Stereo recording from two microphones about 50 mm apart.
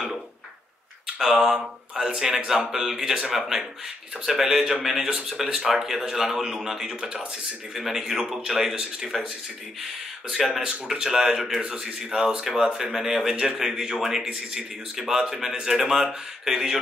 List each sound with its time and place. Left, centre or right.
1.1 s speech: centre
7.7 s speech: centre
11.6 s speech: centre